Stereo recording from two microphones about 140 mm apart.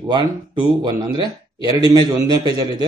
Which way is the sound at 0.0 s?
30° right (ahead or behind).